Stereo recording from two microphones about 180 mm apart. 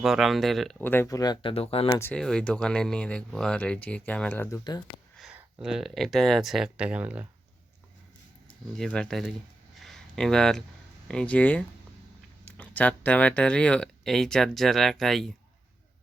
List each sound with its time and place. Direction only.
0.0 s speech: centre (ahead or behind); by 2.0 s 30° left (ahead or behind)
2.0 s speech: 10° left (ahead or behind)
4.5 s speech: 20° left (ahead or behind)
5.1 s speech: 5° right (ahead or behind)
8.7 s speech: 5° left (ahead or behind)
9.8 s a sound: centre (ahead or behind)
11.1 s speech: 5° left (ahead or behind)